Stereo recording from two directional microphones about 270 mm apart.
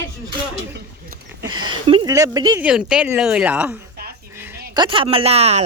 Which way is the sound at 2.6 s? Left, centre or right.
Centre.